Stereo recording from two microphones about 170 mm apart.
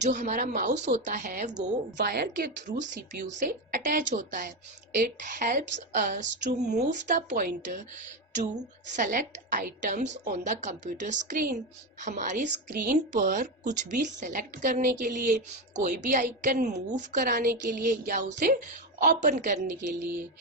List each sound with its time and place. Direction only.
0.0 s a woman's voice: 45° right (ahead or behind)
1.5 s a woman's voice: 90° right; by 3.2 s 65° right (ahead or behind)
3.2 s a woman's voice: 50° right (ahead or behind)
9.0 s a woman's voice: 50° right (ahead or behind)